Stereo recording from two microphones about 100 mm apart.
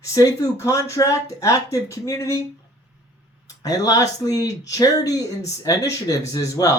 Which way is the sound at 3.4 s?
35° left (ahead or behind).